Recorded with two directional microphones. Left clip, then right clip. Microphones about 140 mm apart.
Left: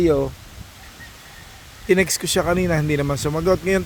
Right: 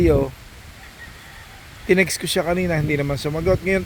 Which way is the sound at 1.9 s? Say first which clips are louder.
Even; 15° left (ahead or behind).